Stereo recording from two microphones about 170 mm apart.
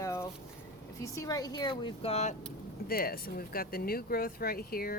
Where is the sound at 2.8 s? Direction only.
60° left (ahead or behind).